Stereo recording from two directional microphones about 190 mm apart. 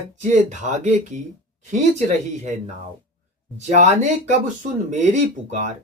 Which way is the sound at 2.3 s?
40° right (ahead or behind).